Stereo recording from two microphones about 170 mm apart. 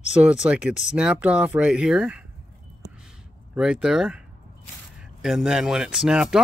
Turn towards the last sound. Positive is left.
turn(degrees=-5)  # may be behind; listen again after turning